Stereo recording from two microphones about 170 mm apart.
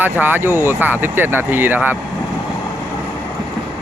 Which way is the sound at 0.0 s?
10° right (ahead or behind).